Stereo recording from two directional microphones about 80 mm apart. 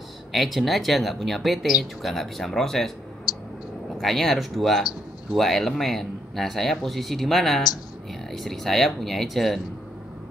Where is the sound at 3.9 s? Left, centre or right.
Centre.